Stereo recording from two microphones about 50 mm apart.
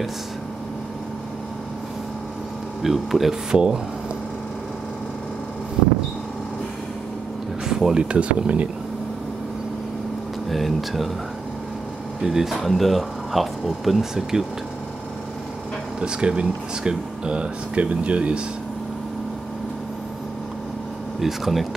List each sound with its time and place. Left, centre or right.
2.8 s speech: centre
3.5 s speech: centre
7.6 s speech: centre
10.5 s speech: centre
12.2 s speech: centre
16.0 s speech: centre
21.2 s speech: centre